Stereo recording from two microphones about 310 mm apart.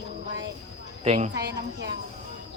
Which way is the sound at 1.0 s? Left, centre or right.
Right.